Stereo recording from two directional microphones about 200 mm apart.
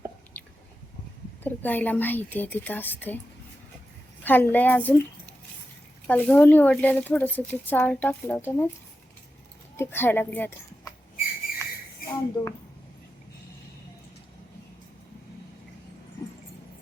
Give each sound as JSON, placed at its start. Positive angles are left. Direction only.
{"t": 1.5, "sound": "speech", "side_deg": 10}
{"t": 4.2, "sound": "speech", "side_deg": 10}
{"t": 6.1, "sound": "speech", "side_deg": 5}
{"t": 9.7, "sound": "speech", "side_deg": 10}
{"t": 12.4, "sound": "a woman's voice", "side_deg": 20}